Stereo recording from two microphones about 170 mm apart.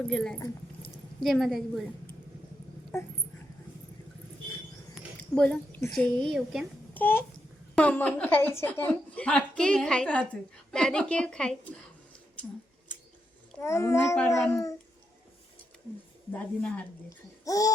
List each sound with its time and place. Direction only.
0.1 s a woman's voice: 5° left (ahead or behind)
5.3 s a woman's voice: 10° left (ahead or behind)
6.9 s a child's voice: 10° left (ahead or behind)
13.6 s a woman's voice: 15° left (ahead or behind)
16.3 s a woman's voice: 5° left (ahead or behind)
17.4 s babbling: 20° left (ahead or behind)